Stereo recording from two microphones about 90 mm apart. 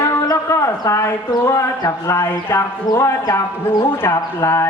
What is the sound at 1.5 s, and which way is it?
Speech, 35° left (ahead or behind).